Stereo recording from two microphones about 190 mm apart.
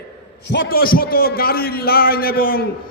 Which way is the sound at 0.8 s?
50° left (ahead or behind).